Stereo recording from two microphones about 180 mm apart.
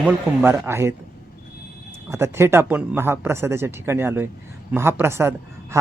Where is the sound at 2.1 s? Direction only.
15° right (ahead or behind).